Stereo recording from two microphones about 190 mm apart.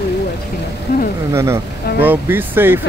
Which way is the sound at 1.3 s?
15° right (ahead or behind).